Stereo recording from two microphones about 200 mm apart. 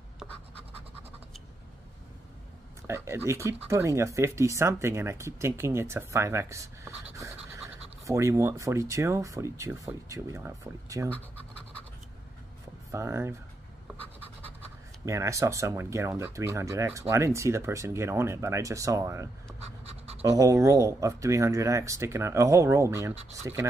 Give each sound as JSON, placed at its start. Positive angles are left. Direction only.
{"t": 2.9, "sound": "speech", "side_deg": -15}
{"t": 12.9, "sound": "speech", "side_deg": -15}
{"t": 15.0, "sound": "speech", "side_deg": -15}
{"t": 19.6, "sound": "pant", "side_deg": -30}
{"t": 20.2, "sound": "speech", "side_deg": -15}